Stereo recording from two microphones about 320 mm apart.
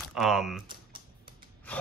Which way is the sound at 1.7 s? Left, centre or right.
Centre.